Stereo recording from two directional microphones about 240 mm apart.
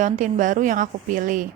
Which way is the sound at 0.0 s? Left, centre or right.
Right.